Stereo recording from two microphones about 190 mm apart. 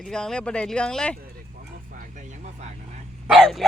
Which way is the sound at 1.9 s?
45° right (ahead or behind).